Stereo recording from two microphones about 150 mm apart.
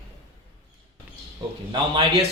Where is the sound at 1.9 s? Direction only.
40° right (ahead or behind).